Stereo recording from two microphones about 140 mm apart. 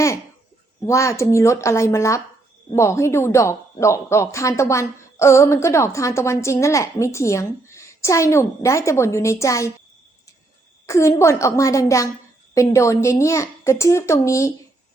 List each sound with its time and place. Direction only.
0.8 s speech: 20° left (ahead or behind)
10.8 s a woman's voice: 20° left (ahead or behind)